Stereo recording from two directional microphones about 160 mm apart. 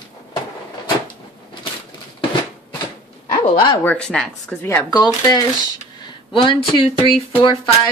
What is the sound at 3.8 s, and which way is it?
Speech, 5° left (ahead or behind).